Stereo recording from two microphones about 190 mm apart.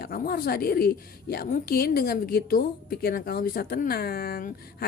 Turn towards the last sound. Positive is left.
turn(degrees=50)  # may be behind; listen again after turning